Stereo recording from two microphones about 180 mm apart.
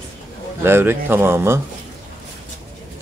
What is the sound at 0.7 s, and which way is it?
Speech, 10° right (ahead or behind).